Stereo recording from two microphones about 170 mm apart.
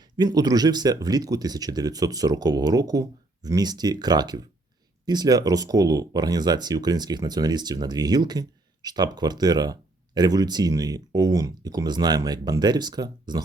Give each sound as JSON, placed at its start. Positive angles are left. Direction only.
{"t": 0.0, "sound": "speech", "side_deg": -25}